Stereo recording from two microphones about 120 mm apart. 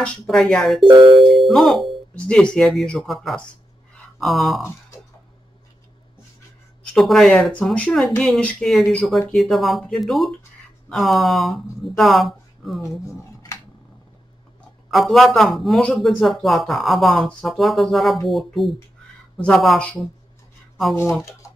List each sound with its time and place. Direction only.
0.0 s speech: 5° left (ahead or behind)
3.9 s a sound: 5° left (ahead or behind)
6.9 s speech: centre (ahead or behind)
13.0 s a sound: 25° left (ahead or behind)
14.9 s speech: centre (ahead or behind)
20.9 s speech: 20° left (ahead or behind)